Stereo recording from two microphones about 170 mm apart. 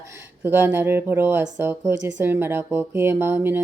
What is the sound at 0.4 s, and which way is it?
Speech, 10° right (ahead or behind).